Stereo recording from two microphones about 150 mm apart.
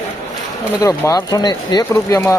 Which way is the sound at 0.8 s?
25° left (ahead or behind).